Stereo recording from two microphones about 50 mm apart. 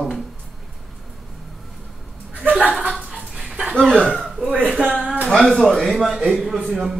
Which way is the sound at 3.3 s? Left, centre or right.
Centre.